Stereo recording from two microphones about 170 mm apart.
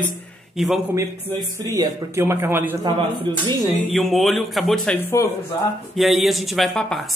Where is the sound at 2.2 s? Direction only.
15° right (ahead or behind).